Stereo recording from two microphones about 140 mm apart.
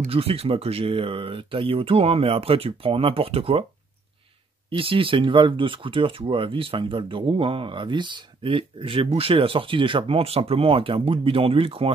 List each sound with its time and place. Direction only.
0.0 s speech: 45° right (ahead or behind)
4.6 s speech: 40° right (ahead or behind)